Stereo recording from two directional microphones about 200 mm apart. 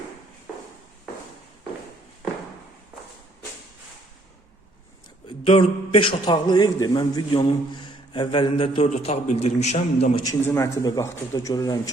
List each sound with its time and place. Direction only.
5.4 s a man's voice: 30° left (ahead or behind)
10.2 s a man's voice: 15° left (ahead or behind)